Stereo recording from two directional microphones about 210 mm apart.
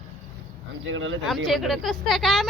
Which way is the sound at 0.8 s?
65° right (ahead or behind).